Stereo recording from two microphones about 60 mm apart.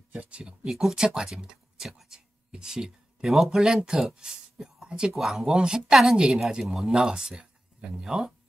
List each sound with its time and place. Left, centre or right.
0.2 s speech: centre
0.7 s speech: centre